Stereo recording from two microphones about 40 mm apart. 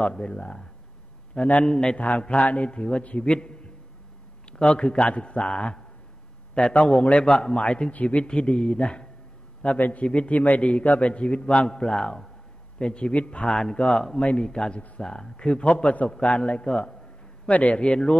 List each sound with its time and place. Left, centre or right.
0.0 s a man's voice: left
1.7 s a man's voice: left
2.0 s a man's voice: left
6.5 s a man's voice: left
7.3 s a man's voice: left
7.9 s a man's voice: left
8.4 s a man's voice: left
9.8 s a man's voice: left
10.0 s a man's voice: left
10.3 s a man's voice: left
10.6 s a man's voice: left
13.5 s a man's voice: centre
15.6 s a man's voice: left
17.5 s a man's voice: left